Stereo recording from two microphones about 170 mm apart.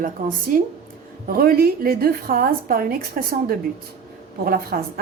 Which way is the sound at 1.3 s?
60° right (ahead or behind).